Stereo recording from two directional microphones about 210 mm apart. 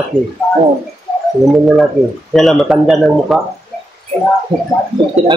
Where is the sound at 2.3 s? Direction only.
Centre (ahead or behind).